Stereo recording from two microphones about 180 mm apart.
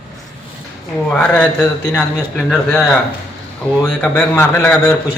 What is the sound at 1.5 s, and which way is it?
A man's voice, 10° left (ahead or behind).